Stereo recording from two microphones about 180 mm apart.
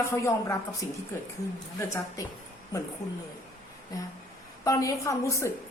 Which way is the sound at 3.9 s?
20° left (ahead or behind).